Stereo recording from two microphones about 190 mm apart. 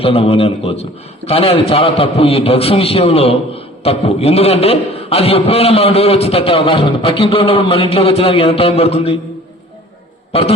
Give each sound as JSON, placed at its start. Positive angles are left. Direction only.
{"t": 0.0, "sound": "a man's voice", "side_deg": 30}